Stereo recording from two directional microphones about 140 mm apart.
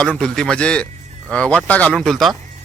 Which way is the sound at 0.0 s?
5° left (ahead or behind).